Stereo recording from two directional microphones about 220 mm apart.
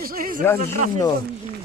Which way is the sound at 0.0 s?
40° right (ahead or behind).